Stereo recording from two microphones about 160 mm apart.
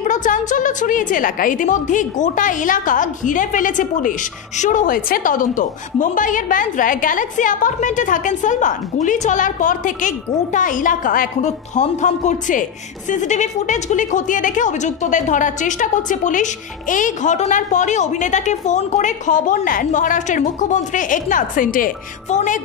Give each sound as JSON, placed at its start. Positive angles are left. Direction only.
{"t": 0.0, "sound": "a woman's voice", "side_deg": 50}